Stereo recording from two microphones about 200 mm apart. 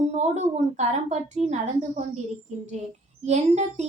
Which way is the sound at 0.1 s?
35° right (ahead or behind).